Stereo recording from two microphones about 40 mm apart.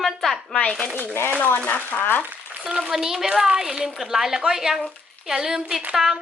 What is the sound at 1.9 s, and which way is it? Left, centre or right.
Speech, left.